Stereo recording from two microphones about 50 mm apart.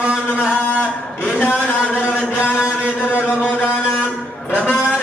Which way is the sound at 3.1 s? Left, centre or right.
Left.